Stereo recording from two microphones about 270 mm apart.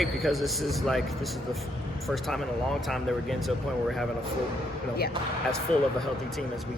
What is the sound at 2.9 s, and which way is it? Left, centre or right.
Speech, centre.